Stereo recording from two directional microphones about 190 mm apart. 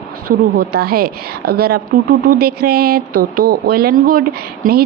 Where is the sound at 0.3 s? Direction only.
50° right (ahead or behind).